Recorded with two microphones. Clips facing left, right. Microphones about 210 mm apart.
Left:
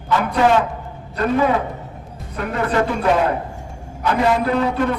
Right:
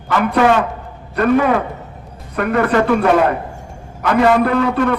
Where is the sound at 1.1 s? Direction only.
65° right (ahead or behind).